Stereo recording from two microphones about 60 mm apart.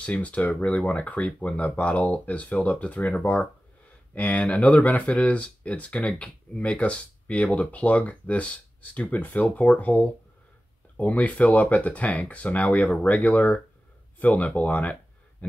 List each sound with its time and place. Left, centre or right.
0.0 s speech: left